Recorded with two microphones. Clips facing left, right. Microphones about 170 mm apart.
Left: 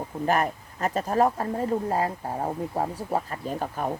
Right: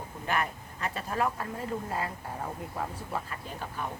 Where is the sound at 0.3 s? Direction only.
40° left (ahead or behind).